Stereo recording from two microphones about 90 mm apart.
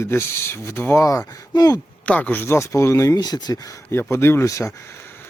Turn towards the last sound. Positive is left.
turn(degrees=35)  # may be behind; listen again after turning